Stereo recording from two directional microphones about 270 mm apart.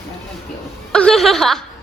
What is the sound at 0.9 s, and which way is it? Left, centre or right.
Speech, centre.